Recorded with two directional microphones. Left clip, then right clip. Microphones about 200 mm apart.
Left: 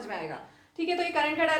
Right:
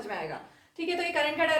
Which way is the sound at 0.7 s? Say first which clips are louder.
Left 1 dB; 25° left (ahead or behind).